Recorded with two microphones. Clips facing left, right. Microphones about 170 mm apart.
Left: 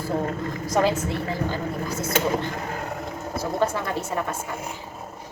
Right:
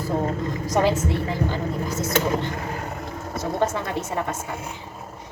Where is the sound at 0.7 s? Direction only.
20° right (ahead or behind).